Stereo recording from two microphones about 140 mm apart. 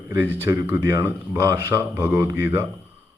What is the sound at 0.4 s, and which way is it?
A man's voice, 25° right (ahead or behind).